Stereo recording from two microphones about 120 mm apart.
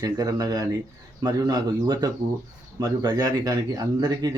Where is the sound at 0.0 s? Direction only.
35° right (ahead or behind).